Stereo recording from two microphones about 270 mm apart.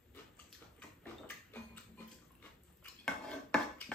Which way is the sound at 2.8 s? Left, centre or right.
Centre.